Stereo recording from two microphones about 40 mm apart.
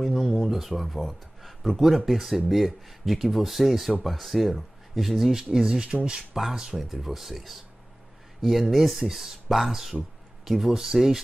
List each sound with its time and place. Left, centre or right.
0.0 s a sound: centre
0.4 s speech: centre; by 6.2 s right
6.3 s speech: centre